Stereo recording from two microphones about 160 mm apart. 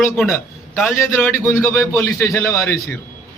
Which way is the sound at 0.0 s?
10° left (ahead or behind).